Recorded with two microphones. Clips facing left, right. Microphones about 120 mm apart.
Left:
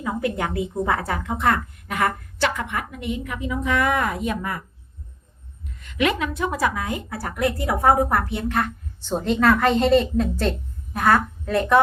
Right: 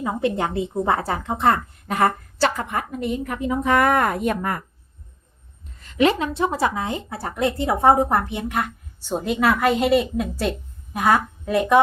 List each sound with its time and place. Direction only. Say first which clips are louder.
0.0 s a woman's voice: right 2 dB; 25° right (ahead or behind); by 4.6 s 50° right (ahead or behind)
5.6 s a woman's voice: right 4 dB; 30° right (ahead or behind); by 11.8 s 15° right (ahead or behind)